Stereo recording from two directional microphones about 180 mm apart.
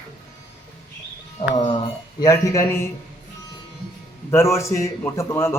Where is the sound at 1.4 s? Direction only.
35° left (ahead or behind).